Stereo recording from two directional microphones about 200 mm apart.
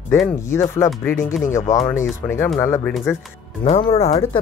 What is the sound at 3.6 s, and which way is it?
Speech, 30° left (ahead or behind).